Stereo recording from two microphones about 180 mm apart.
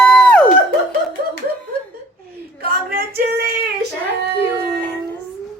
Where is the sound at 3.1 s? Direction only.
60° right (ahead or behind).